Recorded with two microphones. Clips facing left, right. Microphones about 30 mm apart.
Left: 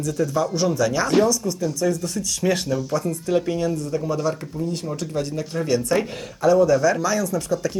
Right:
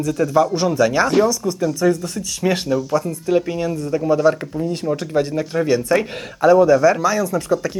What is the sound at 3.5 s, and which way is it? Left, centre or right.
Speech, right.